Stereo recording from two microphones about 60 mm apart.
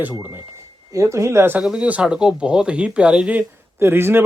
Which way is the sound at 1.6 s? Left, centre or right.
Centre.